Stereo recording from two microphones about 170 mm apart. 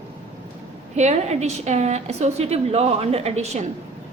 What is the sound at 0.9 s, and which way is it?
A woman's voice, 40° right (ahead or behind).